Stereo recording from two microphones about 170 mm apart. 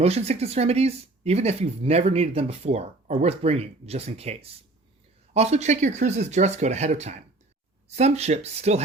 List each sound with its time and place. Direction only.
0.0 s speech: 35° right (ahead or behind)